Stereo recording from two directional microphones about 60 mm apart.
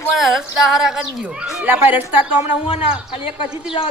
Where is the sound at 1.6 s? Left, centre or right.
Right.